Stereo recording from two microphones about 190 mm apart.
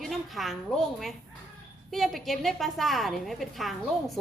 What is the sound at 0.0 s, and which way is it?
A woman's voice, centre (ahead or behind).